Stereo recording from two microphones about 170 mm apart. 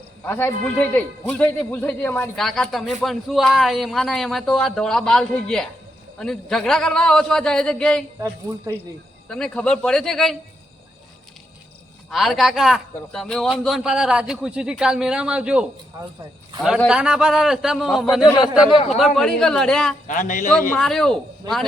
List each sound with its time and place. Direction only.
0.3 s a man's voice: 10° left (ahead or behind)
8.2 s a woman's voice: 20° right (ahead or behind)
9.3 s a man's voice: 5° left (ahead or behind)
12.1 s a man's voice: centre (ahead or behind)
15.9 s a woman's voice: 20° right (ahead or behind)
16.6 s a man's voice: centre (ahead or behind)
20.1 s a man's voice: 50° left (ahead or behind)
20.5 s a man's voice: 5° left (ahead or behind)
21.4 s a woman's voice: 25° right (ahead or behind)